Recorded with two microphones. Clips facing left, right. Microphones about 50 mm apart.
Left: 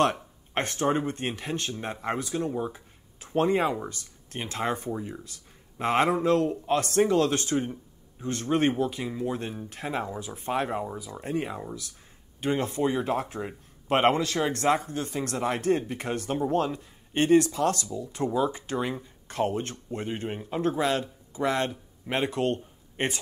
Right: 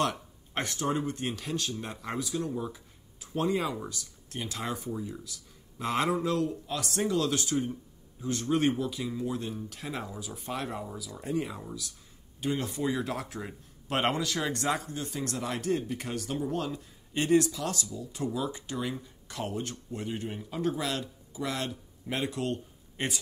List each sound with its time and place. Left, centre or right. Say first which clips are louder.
0.0 s speech: left 6 dB; left